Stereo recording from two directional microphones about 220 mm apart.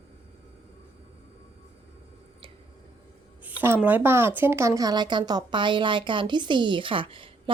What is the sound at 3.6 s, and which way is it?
A woman's voice, 10° right (ahead or behind).